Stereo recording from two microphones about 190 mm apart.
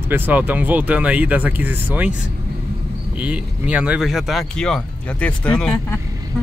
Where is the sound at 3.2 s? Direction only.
5° right (ahead or behind).